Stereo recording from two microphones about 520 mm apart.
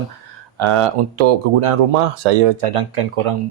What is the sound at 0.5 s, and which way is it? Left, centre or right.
Speech, right.